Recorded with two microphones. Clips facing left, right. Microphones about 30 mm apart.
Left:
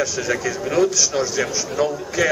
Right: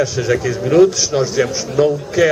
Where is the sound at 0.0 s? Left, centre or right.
Centre.